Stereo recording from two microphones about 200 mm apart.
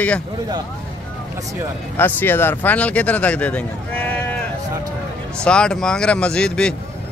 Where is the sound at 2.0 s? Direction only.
10° left (ahead or behind).